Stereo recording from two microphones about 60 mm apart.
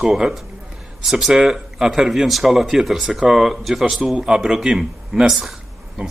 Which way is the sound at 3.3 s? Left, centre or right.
Centre.